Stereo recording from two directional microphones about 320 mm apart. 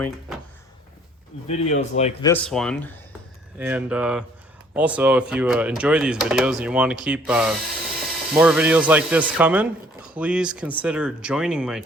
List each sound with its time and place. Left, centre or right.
1.5 s a man's voice: left
2.3 s speech: centre